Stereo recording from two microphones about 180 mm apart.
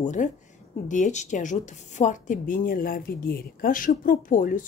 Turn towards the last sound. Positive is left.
turn(degrees=50)  # may be behind; listen again after turning